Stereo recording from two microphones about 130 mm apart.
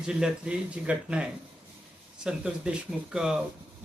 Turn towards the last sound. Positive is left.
turn(degrees=-5)  # may be behind; listen again after turning